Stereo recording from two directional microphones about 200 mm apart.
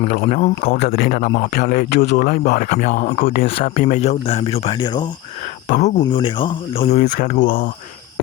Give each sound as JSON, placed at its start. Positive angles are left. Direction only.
{"t": 0.1, "sound": "a man's voice", "side_deg": 45}
{"t": 0.8, "sound": "a man's voice", "side_deg": 50}
{"t": 5.6, "sound": "speech", "side_deg": 35}
{"t": 6.0, "sound": "speech", "side_deg": 25}